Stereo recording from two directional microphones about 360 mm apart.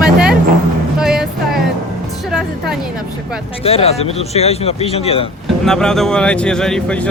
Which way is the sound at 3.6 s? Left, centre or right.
Centre.